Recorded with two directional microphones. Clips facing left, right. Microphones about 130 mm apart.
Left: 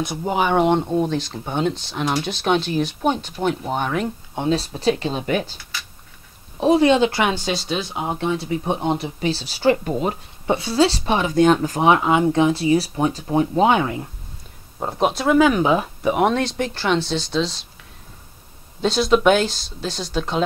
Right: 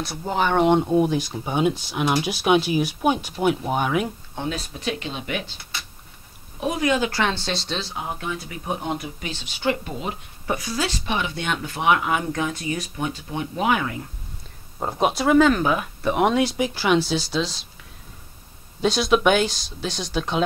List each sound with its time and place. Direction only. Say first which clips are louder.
0.0 s speech: left 3 dB; 15° left (ahead or behind); by 4.1 s 5° right (ahead or behind)
4.4 s speech: left 8 dB; 30° left (ahead or behind)
6.6 s speech: left 7 dB; 30° left (ahead or behind)
7.2 s speech: left 4 dB; 10° left (ahead or behind)
7.9 s speech: left 6 dB; 25° left (ahead or behind); by 10.1 s 45° left (ahead or behind)
10.4 s speech: left 8 dB; 25° left (ahead or behind)
14.8 s speech: left 1 dB; centre (ahead or behind)
15.5 s speech: left 4 dB; 25° left (ahead or behind)
16.0 s speech: left 1 dB; 5° left (ahead or behind)
18.8 s speech: left 2 dB; centre (ahead or behind)